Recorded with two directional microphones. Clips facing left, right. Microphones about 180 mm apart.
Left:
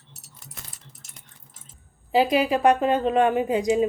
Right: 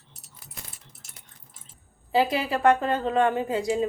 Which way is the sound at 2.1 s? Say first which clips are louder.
Left 4 dB; 15° left (ahead or behind).